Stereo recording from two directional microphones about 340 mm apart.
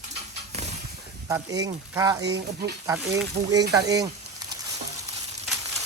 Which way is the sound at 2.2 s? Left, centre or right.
Right.